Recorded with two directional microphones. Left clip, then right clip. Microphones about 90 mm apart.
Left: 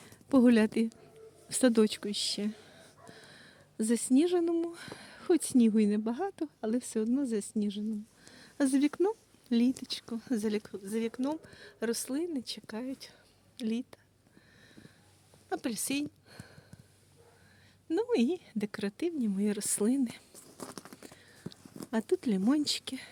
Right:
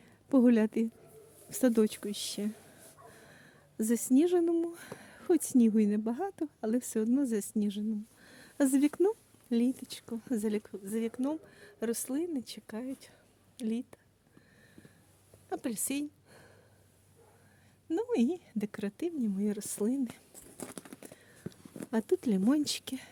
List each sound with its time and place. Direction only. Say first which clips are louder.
0.0 s a sound: left 1 dB; centre (ahead or behind)
1.5 s speech: left 2 dB; centre (ahead or behind); by 6.8 s 25° right (ahead or behind)
7.2 s speech: right 1 dB; 45° right (ahead or behind); by 9.0 s 25° right (ahead or behind)
9.0 s speech: right 1 dB; centre (ahead or behind)
9.8 s speech: left 3 dB; 15° right (ahead or behind)
15.4 s speech: left 2 dB; centre (ahead or behind)
17.8 s a woman's voice: left 2 dB; centre (ahead or behind)
20.1 s a sound: left 3 dB; centre (ahead or behind)
21.5 s a sound: right 1 dB; 25° right (ahead or behind)
21.8 s speech: even; 30° right (ahead or behind)